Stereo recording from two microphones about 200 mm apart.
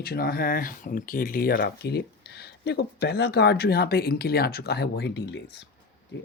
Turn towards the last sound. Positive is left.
turn(degrees=55)  # may be behind; listen again after turning